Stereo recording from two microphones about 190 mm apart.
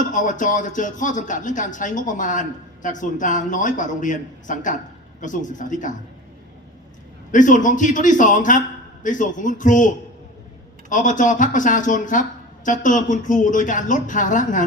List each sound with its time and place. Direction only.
0.0 s speech: 45° left (ahead or behind)
7.3 s speech: 40° left (ahead or behind)